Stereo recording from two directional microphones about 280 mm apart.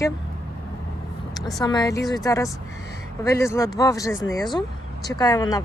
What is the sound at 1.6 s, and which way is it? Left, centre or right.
Speech, centre.